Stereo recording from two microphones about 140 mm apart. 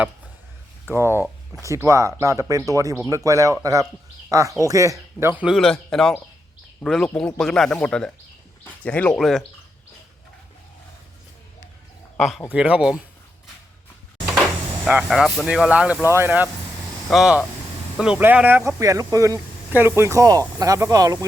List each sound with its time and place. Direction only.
0.9 s speech: 15° right (ahead or behind)
5.5 s speech: 5° left (ahead or behind)
12.1 s speech: centre (ahead or behind)
14.8 s speech: 5° right (ahead or behind)
17.1 s speech: 5° right (ahead or behind)
18.8 s speech: 25° right (ahead or behind)